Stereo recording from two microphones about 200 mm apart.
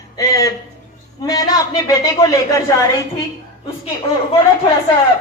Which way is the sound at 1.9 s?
15° left (ahead or behind).